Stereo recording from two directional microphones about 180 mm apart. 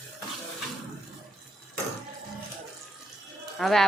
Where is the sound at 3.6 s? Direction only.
Centre (ahead or behind).